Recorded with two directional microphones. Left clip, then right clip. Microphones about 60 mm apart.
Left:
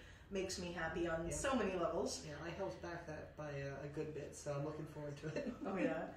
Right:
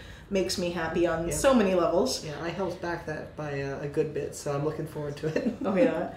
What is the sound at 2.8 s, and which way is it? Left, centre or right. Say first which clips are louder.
Speech: right 15 dB; left.